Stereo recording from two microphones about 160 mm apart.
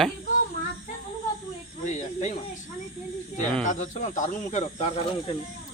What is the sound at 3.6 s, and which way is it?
Speech, 50° left (ahead or behind).